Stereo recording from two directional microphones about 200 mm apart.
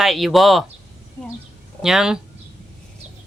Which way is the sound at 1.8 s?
Centre (ahead or behind).